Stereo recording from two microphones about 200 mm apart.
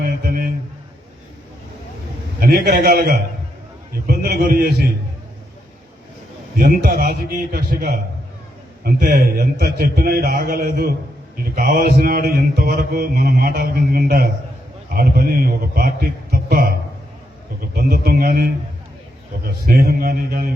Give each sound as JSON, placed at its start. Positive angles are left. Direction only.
{"t": 0.0, "sound": "a sound", "side_deg": -45}
{"t": 2.4, "sound": "mantra", "side_deg": -50}
{"t": 6.6, "sound": "mantra", "side_deg": -45}
{"t": 19.6, "sound": "mantra", "side_deg": -50}